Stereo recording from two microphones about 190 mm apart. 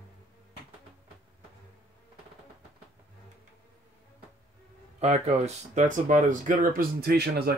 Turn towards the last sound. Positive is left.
turn(degrees=-55)  # may be behind; listen again after turning